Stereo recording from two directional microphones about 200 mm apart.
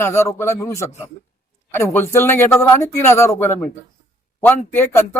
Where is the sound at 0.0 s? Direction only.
15° left (ahead or behind).